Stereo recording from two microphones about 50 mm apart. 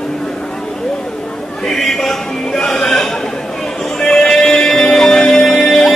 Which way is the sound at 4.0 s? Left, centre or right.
Centre.